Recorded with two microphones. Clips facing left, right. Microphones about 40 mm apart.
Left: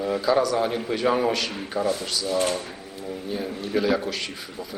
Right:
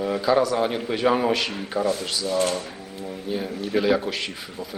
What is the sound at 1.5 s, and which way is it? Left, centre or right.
Speech, centre.